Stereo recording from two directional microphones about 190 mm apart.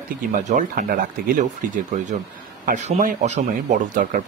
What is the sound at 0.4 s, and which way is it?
Speech, 40° right (ahead or behind).